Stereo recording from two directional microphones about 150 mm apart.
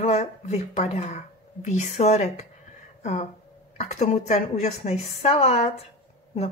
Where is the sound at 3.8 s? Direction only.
50° left (ahead or behind).